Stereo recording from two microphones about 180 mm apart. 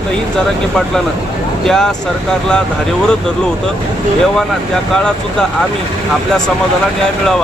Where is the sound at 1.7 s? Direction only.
Centre (ahead or behind).